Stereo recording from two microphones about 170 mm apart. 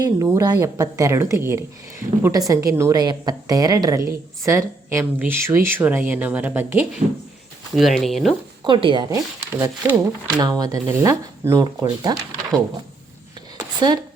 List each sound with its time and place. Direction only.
0.0 s a woman's voice: 20° right (ahead or behind)
7.8 s speech: centre (ahead or behind)
8.6 s speech: 30° right (ahead or behind)
13.7 s speech: 25° right (ahead or behind)